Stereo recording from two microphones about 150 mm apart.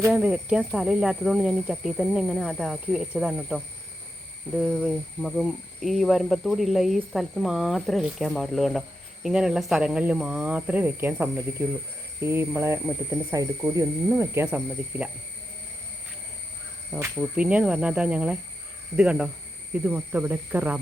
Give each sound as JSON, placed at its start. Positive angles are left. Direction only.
{"t": 0.1, "sound": "speech", "side_deg": -5}
{"t": 17.0, "sound": "speech", "side_deg": -10}